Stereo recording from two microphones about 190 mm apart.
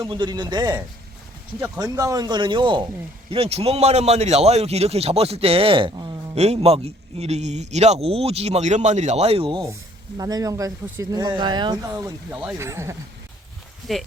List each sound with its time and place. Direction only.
0.0 s speech: 25° right (ahead or behind)
6.3 s speech: 35° right (ahead or behind); by 13.0 s 15° right (ahead or behind)
13.9 s speech: centre (ahead or behind)